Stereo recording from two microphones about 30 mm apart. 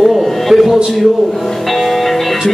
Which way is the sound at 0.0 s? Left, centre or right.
Centre.